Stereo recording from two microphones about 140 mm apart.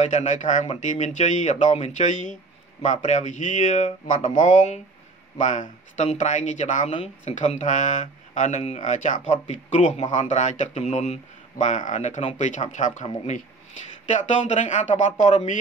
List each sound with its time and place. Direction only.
0.0 s speech: 55° left (ahead or behind)